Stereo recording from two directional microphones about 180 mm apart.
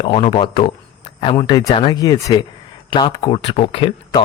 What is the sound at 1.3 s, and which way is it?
A man's voice, 20° left (ahead or behind).